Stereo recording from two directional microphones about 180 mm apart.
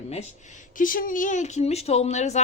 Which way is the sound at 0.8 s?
50° left (ahead or behind).